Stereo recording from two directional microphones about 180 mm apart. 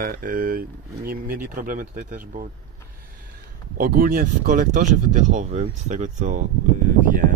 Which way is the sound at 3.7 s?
55° right (ahead or behind).